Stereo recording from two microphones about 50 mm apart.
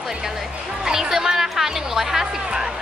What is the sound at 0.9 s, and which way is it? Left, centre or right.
Speech, centre.